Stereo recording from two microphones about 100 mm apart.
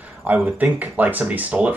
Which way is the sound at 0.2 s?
15° right (ahead or behind).